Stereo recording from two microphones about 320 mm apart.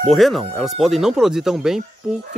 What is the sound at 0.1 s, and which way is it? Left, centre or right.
Speech, centre.